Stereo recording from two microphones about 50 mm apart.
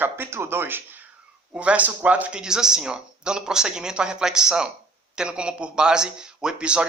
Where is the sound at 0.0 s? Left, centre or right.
Right.